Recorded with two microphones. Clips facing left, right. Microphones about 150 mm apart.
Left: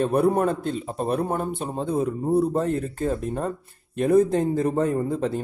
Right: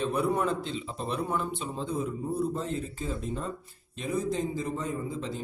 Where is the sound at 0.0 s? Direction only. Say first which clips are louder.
Left 7 dB; 55° left (ahead or behind).